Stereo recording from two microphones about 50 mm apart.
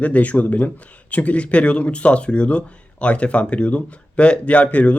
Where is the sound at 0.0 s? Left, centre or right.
Left.